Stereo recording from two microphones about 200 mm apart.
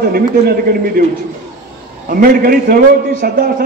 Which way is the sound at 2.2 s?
45° right (ahead or behind).